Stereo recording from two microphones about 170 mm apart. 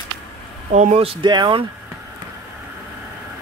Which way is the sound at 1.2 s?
25° right (ahead or behind).